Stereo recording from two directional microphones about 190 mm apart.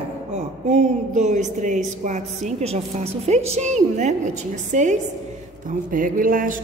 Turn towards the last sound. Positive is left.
turn(degrees=-45)  # may be behind; listen again after turning